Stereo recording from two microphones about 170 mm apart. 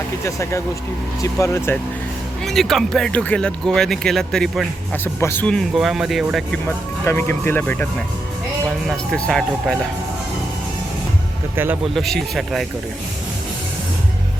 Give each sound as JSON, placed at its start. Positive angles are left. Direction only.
{"t": 0.3, "sound": "speech", "side_deg": 20}
{"t": 2.4, "sound": "speech", "side_deg": 0}
{"t": 5.0, "sound": "speech", "side_deg": 15}
{"t": 6.7, "sound": "speech", "side_deg": 15}
{"t": 8.9, "sound": "speech", "side_deg": 5}
{"t": 11.5, "sound": "speech", "side_deg": -10}
{"t": 11.9, "sound": "speech", "side_deg": 0}